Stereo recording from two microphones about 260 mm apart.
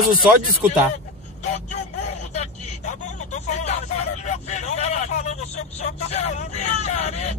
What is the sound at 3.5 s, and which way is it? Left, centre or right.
Vehicle, left.